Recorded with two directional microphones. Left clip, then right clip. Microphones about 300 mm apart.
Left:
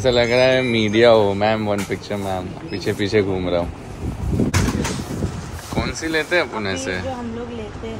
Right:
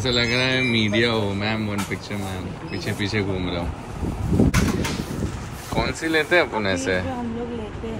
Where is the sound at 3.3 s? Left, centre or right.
Centre.